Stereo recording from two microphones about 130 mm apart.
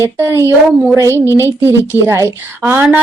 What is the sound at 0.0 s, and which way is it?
A woman's voice, 20° right (ahead or behind).